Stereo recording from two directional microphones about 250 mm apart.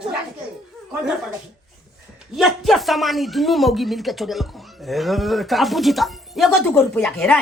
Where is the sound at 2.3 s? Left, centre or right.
Centre.